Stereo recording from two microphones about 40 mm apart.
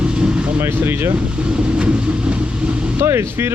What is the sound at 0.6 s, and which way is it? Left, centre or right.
Speech, right.